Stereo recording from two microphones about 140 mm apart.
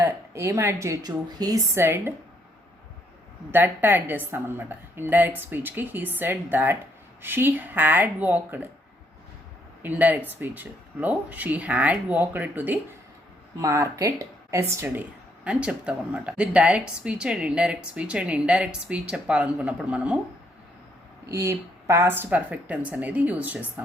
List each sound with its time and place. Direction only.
0.0 s a woman's voice: 20° right (ahead or behind)
3.5 s speech: 15° right (ahead or behind)
9.8 s a woman's voice: 10° right (ahead or behind)
15.4 s speech: 10° right (ahead or behind)
21.2 s speech: 20° right (ahead or behind)